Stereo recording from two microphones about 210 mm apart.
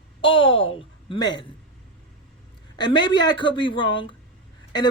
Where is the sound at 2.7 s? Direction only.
20° left (ahead or behind).